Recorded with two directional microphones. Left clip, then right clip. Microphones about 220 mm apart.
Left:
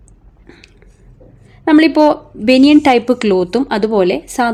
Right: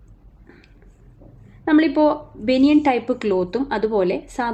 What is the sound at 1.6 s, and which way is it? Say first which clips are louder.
A woman's voice: left 7 dB; 40° left (ahead or behind).